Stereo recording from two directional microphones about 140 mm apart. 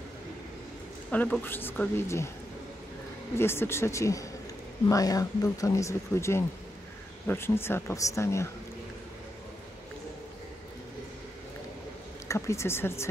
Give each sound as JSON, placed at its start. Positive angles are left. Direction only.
{"t": 1.1, "sound": "a woman's voice", "side_deg": 10}
{"t": 3.3, "sound": "speech", "side_deg": 15}
{"t": 12.3, "sound": "speech", "side_deg": 20}